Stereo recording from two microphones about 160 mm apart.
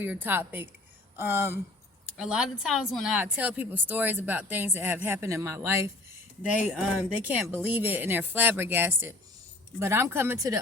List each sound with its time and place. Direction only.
0.0 s speech: 10° right (ahead or behind)
1.1 s a sound: 15° right (ahead or behind)
2.1 s speech: 5° right (ahead or behind)
6.7 s speech: centre (ahead or behind); by 10.6 s 20° right (ahead or behind)